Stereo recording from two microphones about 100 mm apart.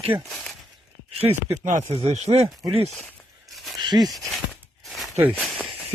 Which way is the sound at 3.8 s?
45° right (ahead or behind).